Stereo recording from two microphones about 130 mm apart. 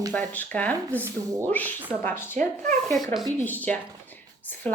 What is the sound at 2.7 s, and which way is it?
Speech, centre (ahead or behind).